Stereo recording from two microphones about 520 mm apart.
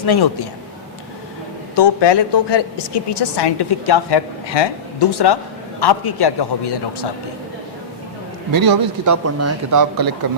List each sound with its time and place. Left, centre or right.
0.0 s a woman's voice: left
1.7 s a woman's voice: left
8.5 s speech: right
9.2 s speech: right